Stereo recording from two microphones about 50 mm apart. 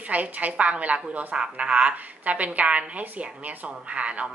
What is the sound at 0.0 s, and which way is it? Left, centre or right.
A woman's voice, right.